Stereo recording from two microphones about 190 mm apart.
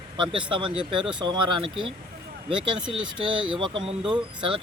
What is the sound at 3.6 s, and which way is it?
Speech, 25° right (ahead or behind).